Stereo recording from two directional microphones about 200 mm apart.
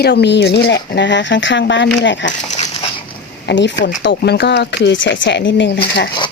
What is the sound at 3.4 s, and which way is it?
Speech, 60° left (ahead or behind).